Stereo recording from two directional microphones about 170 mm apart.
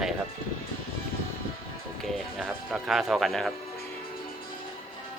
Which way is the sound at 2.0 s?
Centre (ahead or behind).